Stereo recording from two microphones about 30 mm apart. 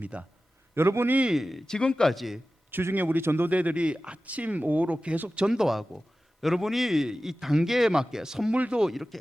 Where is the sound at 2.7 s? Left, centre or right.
Right.